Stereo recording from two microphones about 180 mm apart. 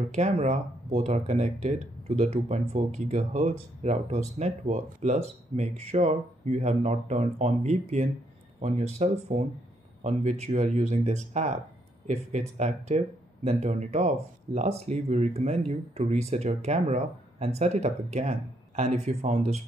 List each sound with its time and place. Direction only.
0.1 s speech: 40° right (ahead or behind)